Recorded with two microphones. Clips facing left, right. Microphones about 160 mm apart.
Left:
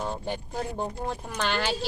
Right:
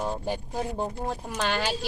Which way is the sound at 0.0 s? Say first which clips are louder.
Right 2 dB; 10° right (ahead or behind).